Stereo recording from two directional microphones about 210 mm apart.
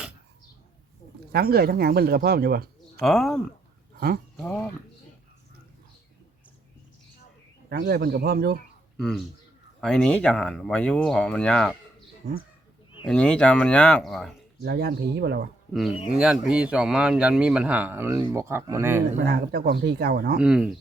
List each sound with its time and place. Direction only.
1.3 s speech: 45° right (ahead or behind)
3.0 s speech: centre (ahead or behind)
7.7 s speech: 50° right (ahead or behind)
9.0 s speech: centre (ahead or behind)
13.1 s speech: 5° left (ahead or behind)
14.6 s speech: 50° right (ahead or behind)
15.7 s speech: centre (ahead or behind)
19.2 s speech: 50° right (ahead or behind)
20.4 s speech: 5° right (ahead or behind)